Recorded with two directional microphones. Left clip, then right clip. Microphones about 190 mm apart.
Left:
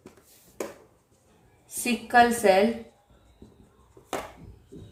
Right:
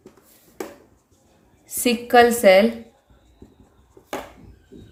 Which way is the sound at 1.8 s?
45° right (ahead or behind).